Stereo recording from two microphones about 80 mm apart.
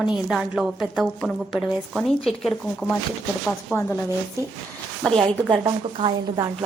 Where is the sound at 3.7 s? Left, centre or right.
Left.